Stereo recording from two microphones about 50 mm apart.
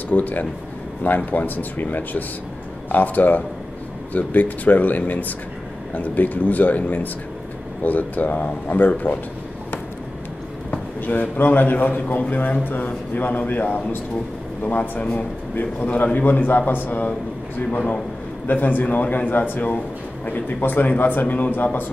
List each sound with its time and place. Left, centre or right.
0.1 s a man's voice: left
11.0 s a man's voice: left
17.7 s a man's voice: left
18.5 s a man's voice: left